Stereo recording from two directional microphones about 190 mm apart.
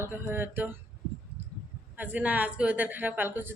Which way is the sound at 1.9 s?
10° right (ahead or behind).